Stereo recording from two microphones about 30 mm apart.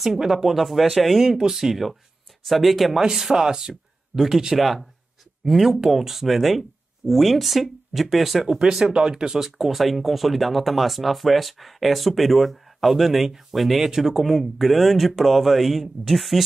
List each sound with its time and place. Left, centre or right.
0.0 s speech: centre
0.7 s speech: centre
3.0 s speech: centre
3.4 s a sound: right
4.3 s speech: centre
4.6 s speech: centre
8.5 s speech: centre
9.3 s speech: centre
14.2 s speech: centre